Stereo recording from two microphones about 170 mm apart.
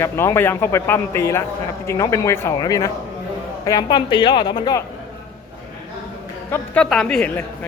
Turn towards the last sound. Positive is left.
turn(degrees=5)  # may be behind; listen again after turning